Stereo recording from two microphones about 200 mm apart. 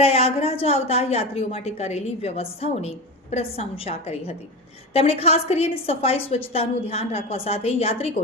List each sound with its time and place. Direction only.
0.0 s a woman's voice: 30° left (ahead or behind)